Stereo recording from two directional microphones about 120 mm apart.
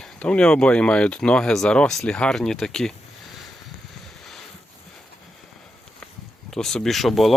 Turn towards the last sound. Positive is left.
turn(degrees=0)  # may be behind; listen again after turning